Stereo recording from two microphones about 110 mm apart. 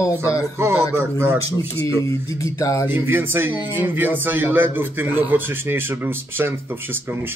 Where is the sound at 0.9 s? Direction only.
25° right (ahead or behind).